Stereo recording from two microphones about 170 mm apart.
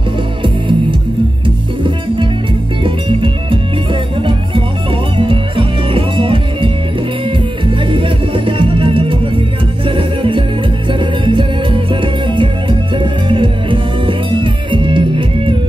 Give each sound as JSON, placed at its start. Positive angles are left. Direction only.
{"t": 2.8, "sound": "music", "side_deg": -30}
{"t": 5.1, "sound": "music", "side_deg": -30}
{"t": 7.9, "sound": "music", "side_deg": -30}